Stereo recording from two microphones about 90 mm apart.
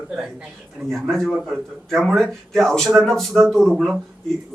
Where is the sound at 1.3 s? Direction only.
Centre (ahead or behind).